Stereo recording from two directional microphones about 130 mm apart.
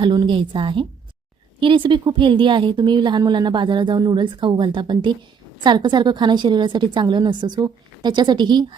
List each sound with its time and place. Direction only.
0.0 s a woman's voice: 35° right (ahead or behind)